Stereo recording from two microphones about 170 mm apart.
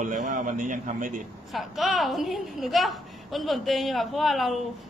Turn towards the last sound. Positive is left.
turn(degrees=0)  # may be behind; listen again after turning